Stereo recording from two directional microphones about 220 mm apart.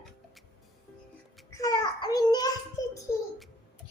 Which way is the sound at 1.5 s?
15° left (ahead or behind).